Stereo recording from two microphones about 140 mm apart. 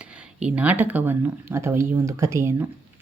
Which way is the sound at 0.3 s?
10° right (ahead or behind).